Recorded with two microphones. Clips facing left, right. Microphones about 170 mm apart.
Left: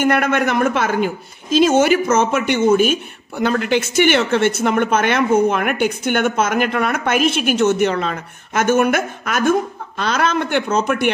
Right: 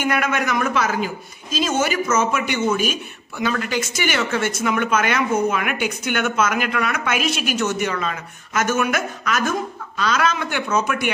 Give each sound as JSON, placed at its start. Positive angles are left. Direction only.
{"t": 0.0, "sound": "a woman's voice", "side_deg": 55}